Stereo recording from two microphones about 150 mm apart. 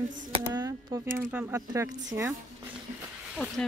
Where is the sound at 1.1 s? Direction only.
15° right (ahead or behind).